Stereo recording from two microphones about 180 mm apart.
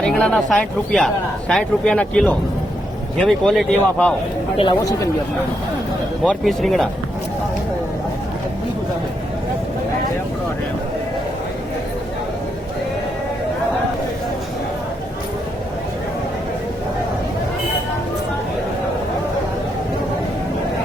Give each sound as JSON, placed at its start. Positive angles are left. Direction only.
{"t": 0.0, "sound": "speech", "side_deg": 5}
{"t": 4.5, "sound": "speech", "side_deg": 25}
{"t": 6.2, "sound": "speech", "side_deg": 0}